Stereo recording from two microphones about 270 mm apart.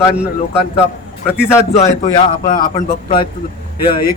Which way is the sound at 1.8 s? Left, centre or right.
Left.